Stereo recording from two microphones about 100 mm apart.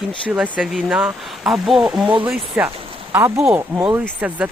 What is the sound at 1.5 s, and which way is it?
Speech, centre (ahead or behind).